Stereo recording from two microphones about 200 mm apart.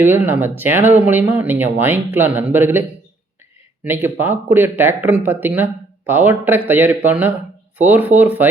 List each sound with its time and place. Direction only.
0.0 s speech: 10° right (ahead or behind)
3.8 s speech: 10° right (ahead or behind)